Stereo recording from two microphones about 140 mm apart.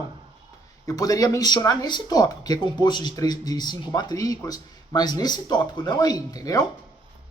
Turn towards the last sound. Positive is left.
turn(degrees=25)  # may be behind; listen again after turning